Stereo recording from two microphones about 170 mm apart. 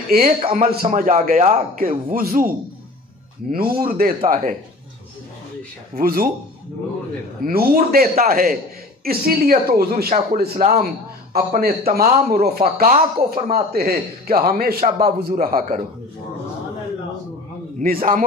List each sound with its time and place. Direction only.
0.4 s speech: 35° right (ahead or behind)
0.7 s a man's voice: 50° right (ahead or behind)
5.9 s speech: 60° right (ahead or behind)
7.4 s speech: 55° right (ahead or behind)
17.7 s speech: 55° right (ahead or behind)